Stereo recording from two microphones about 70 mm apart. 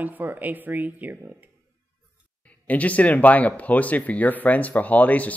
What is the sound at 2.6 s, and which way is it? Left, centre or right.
Speech, left.